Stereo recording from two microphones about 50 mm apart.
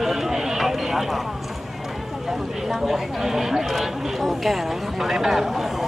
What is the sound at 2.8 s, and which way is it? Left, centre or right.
Speech, centre.